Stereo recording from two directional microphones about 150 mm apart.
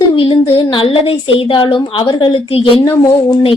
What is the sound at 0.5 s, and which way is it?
A woman's voice, 35° left (ahead or behind).